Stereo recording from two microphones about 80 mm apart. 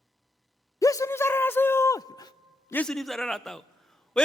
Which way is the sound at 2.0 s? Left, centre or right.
Left.